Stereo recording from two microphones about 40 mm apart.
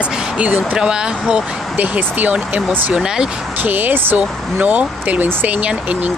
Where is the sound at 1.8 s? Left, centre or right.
Right.